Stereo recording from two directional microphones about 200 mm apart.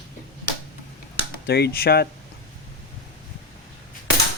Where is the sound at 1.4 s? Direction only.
55° left (ahead or behind).